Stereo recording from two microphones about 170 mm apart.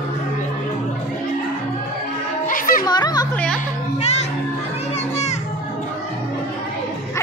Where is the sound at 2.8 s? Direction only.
25° left (ahead or behind).